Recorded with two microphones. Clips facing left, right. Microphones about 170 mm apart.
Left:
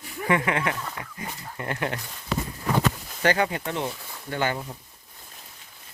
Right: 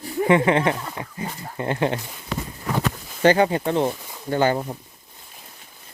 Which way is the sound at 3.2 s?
30° right (ahead or behind).